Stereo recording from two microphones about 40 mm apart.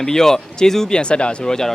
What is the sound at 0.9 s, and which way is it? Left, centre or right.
Speech, left.